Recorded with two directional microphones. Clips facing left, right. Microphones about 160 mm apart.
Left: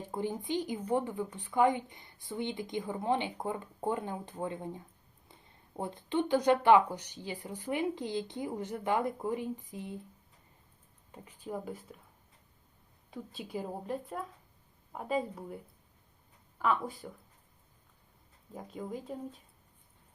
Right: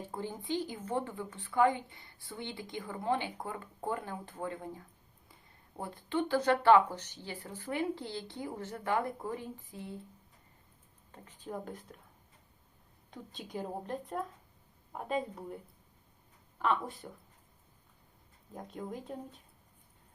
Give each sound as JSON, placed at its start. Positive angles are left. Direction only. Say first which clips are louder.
{"t": 0.1, "sound": "speech", "louder": "left 3 dB", "side_deg": 15}
{"t": 11.1, "sound": "speech", "louder": "left 2 dB", "side_deg": 10}
{"t": 13.1, "sound": "speech", "louder": "left 4 dB", "side_deg": 5}
{"t": 16.6, "sound": "speech", "louder": "left 1 dB", "side_deg": 0}
{"t": 18.5, "sound": "speech", "louder": "left 1 dB", "side_deg": 0}